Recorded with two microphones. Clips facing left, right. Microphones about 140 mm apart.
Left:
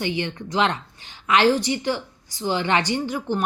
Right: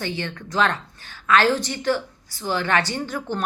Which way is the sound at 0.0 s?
15° left (ahead or behind).